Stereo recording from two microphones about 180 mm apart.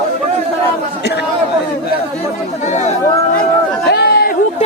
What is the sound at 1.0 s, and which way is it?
Chatter, 65° left (ahead or behind).